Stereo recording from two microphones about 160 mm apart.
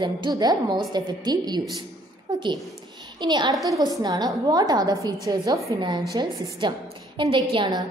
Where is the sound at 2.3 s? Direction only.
25° right (ahead or behind).